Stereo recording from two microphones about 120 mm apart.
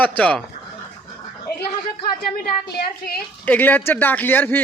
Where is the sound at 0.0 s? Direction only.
10° left (ahead or behind).